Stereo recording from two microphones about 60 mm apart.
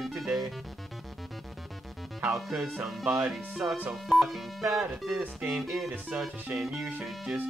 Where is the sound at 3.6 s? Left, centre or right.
Right.